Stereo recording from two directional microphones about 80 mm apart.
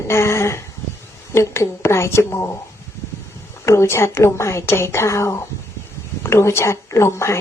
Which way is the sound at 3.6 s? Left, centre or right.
Left.